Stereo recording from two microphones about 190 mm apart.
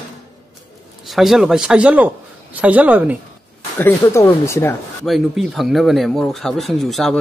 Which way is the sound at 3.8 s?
15° left (ahead or behind).